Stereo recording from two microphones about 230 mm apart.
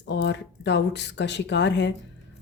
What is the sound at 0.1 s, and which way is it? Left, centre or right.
A woman's voice, left.